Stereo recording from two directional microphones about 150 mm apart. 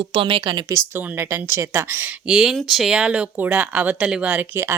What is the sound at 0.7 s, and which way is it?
A woman's voice, 15° right (ahead or behind).